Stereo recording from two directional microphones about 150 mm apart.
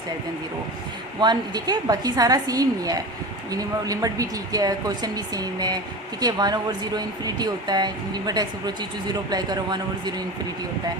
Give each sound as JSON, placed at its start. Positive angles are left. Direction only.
{"t": 1.2, "sound": "speech", "side_deg": -30}